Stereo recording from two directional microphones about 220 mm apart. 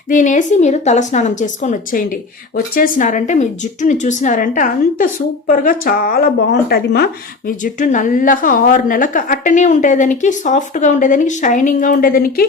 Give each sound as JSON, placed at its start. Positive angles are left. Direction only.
{"t": 0.1, "sound": "speech", "side_deg": 35}